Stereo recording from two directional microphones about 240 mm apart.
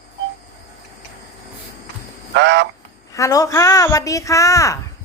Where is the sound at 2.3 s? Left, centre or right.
Right.